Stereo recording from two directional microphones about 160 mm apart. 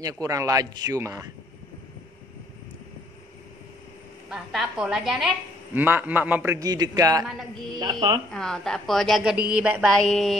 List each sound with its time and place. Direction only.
0.2 s speech: 20° right (ahead or behind)
4.3 s a woman's voice: 5° right (ahead or behind); by 8.2 s 25° right (ahead or behind)
8.3 s a woman's voice: 5° left (ahead or behind)